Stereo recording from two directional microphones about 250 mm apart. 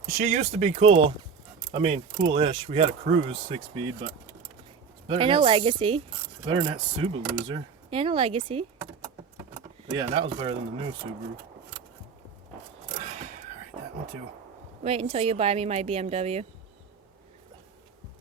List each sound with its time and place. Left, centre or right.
0.1 s speech: right
5.0 s speech: right
14.8 s speech: right